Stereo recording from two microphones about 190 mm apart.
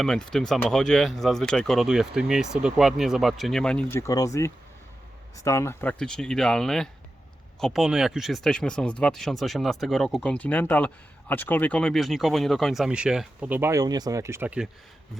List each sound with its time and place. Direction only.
0.0 s speech: 5° left (ahead or behind)